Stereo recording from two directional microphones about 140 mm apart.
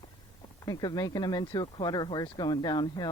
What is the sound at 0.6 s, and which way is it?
Speech, 30° left (ahead or behind).